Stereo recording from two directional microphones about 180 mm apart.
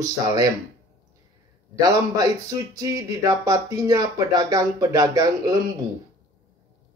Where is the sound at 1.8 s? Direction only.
20° right (ahead or behind).